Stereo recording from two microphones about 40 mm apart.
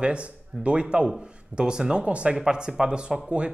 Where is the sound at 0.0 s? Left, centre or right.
Right.